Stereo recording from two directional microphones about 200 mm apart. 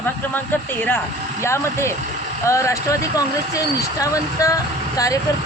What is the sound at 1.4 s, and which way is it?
Speech, 15° left (ahead or behind).